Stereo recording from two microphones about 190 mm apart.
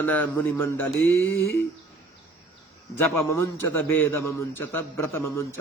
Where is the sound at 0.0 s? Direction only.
10° left (ahead or behind).